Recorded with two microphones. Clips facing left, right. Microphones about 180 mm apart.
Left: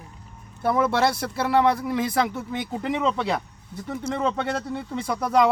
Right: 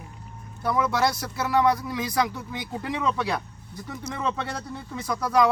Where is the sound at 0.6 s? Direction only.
25° left (ahead or behind).